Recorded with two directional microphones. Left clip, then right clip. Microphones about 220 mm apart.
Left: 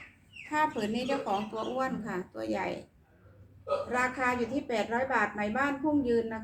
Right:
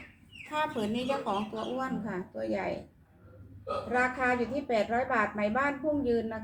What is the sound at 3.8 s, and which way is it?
A woman's voice, 30° left (ahead or behind).